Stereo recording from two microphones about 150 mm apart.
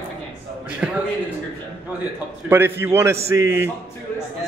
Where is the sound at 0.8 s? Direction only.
5° right (ahead or behind).